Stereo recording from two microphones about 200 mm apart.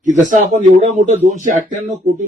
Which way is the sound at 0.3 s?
40° right (ahead or behind).